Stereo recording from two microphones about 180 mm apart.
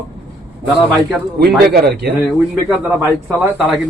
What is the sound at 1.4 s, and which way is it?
Speech, 60° right (ahead or behind).